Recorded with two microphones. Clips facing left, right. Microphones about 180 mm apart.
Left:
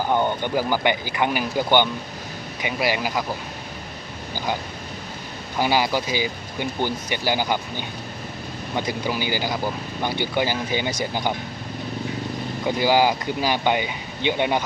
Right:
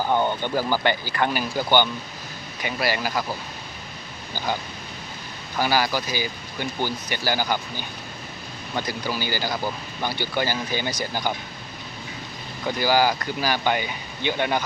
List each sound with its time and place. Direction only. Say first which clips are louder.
0.1 s speech: left 2 dB; 15° left (ahead or behind)
5.5 s speech: left 2 dB; 20° left (ahead or behind)
12.6 s speech: left 2 dB; 20° left (ahead or behind)